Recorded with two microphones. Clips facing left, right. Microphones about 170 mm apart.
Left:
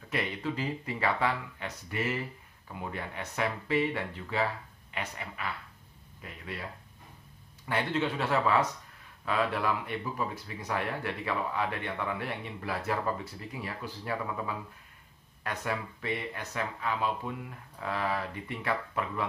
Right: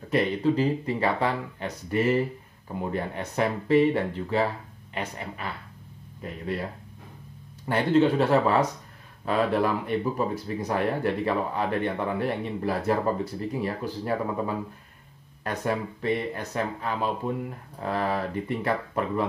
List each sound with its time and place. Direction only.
0.1 s speech: 35° right (ahead or behind)